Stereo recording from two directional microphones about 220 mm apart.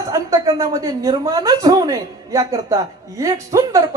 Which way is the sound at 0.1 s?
15° right (ahead or behind).